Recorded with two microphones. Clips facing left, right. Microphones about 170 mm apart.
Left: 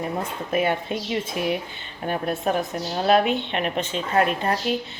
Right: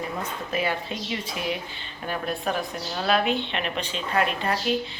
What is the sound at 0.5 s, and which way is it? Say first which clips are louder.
Speech: left 5 dB; 55° left (ahead or behind).